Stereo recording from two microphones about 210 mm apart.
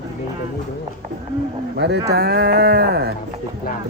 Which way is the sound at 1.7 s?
55° right (ahead or behind).